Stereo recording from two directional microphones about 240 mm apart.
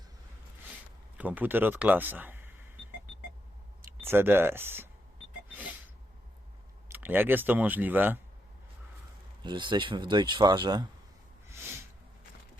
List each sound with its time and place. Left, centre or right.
1.2 s speech: centre
4.0 s speech: centre
6.8 s speech: centre
9.4 s speech: centre
11.5 s a sound: centre